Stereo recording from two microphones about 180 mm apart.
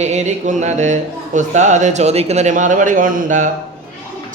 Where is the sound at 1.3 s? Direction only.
40° right (ahead or behind).